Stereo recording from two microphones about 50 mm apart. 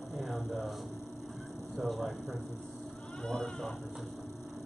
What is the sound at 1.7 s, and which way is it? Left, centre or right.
Speech, centre.